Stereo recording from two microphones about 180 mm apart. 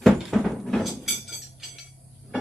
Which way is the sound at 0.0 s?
Centre (ahead or behind).